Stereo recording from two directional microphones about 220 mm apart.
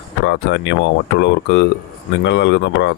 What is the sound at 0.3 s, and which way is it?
Speech, 55° left (ahead or behind).